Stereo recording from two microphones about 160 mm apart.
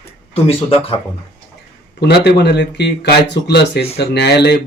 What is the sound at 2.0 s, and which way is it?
Speech, 90° left.